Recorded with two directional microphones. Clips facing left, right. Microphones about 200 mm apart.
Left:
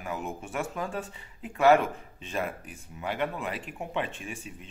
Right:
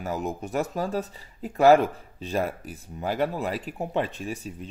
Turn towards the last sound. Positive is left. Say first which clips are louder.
# right 6 dB
turn(degrees=-35)  # may be behind; listen again after turning